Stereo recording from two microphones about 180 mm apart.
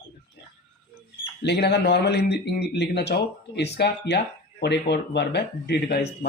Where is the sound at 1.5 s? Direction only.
65° left (ahead or behind).